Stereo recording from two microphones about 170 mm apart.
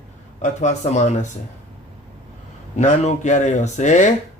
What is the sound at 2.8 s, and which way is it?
Speech, 45° left (ahead or behind).